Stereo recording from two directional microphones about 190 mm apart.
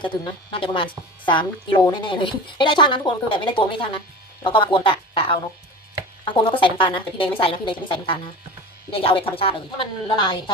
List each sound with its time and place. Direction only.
0.0 s speech: 25° left (ahead or behind)